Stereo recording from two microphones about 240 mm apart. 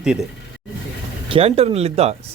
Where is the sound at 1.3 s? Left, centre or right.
Right.